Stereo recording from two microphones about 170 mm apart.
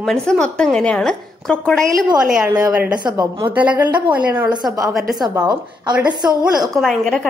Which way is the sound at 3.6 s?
10° right (ahead or behind).